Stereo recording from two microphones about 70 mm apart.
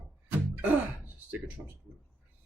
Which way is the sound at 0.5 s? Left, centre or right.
Right.